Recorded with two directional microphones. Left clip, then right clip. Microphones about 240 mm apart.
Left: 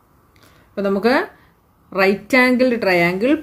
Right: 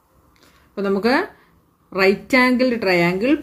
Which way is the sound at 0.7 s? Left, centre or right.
Centre.